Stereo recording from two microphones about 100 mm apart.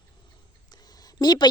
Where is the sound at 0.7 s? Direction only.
40° left (ahead or behind).